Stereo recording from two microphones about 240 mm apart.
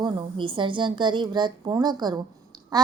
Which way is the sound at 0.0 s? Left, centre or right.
Centre.